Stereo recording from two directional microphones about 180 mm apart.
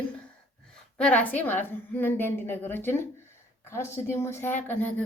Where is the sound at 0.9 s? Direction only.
5° left (ahead or behind).